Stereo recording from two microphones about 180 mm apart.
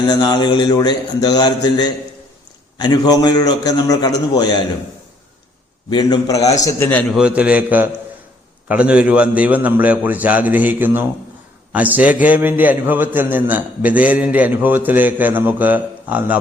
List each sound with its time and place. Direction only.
0.1 s a man's voice: 25° left (ahead or behind)
5.9 s a man's voice: 20° left (ahead or behind)
7.1 s a man's voice: 5° right (ahead or behind)